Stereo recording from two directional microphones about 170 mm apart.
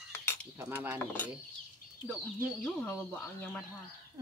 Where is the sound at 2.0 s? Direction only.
10° left (ahead or behind).